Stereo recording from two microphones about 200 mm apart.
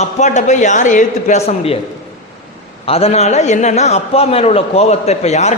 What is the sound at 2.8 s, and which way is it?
A man's voice, 30° left (ahead or behind).